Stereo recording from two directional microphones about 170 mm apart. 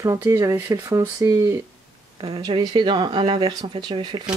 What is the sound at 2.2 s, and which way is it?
Speech, 30° right (ahead or behind).